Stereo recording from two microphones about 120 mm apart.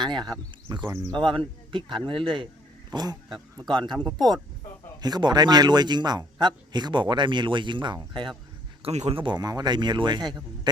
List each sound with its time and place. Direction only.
0.0 s a man's voice: 40° right (ahead or behind)
0.9 s speech: 20° right (ahead or behind)
1.1 s a man's voice: 45° right (ahead or behind)
3.9 s speech: 5° left (ahead or behind)
4.9 s a man's voice: 35° right (ahead or behind)
8.8 s a man's voice: 60° right (ahead or behind); by 10.7 s 35° right (ahead or behind)